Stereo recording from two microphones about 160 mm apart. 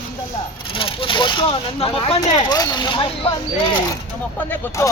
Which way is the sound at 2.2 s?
25° left (ahead or behind).